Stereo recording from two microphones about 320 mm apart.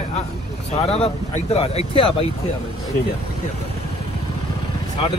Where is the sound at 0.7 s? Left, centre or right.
Centre.